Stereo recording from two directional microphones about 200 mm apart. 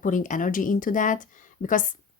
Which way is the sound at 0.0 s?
40° left (ahead or behind).